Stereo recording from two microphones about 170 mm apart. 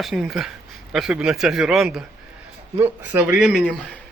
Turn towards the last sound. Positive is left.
turn(degrees=5)  # may be behind; listen again after turning